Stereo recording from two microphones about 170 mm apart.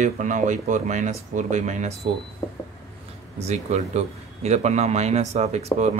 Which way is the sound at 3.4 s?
40° right (ahead or behind).